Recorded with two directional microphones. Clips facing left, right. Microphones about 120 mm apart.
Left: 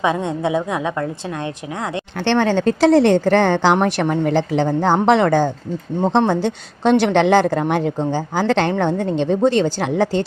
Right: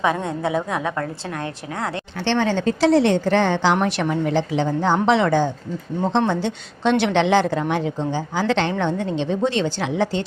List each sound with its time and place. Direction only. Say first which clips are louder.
0.0 s a woman's voice: left 2 dB; 20° left (ahead or behind)
2.2 s a woman's voice: left 4 dB; 55° left (ahead or behind)